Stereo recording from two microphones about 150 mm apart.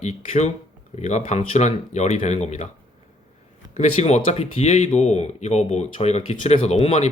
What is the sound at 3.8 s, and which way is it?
Speech, 50° left (ahead or behind).